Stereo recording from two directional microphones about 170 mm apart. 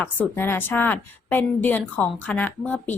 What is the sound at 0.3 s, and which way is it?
A woman's voice, 10° left (ahead or behind).